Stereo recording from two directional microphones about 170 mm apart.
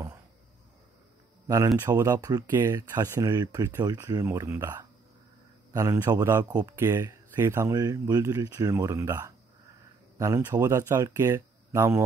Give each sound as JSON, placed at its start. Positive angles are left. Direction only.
{"t": 1.8, "sound": "speech", "side_deg": -15}